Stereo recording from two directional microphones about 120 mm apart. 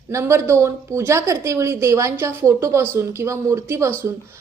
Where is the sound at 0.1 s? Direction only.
25° right (ahead or behind).